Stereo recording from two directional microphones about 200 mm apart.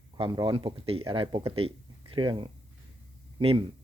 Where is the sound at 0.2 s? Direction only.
25° right (ahead or behind).